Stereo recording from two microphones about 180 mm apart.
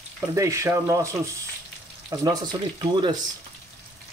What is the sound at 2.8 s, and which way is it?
Speech, 25° right (ahead or behind).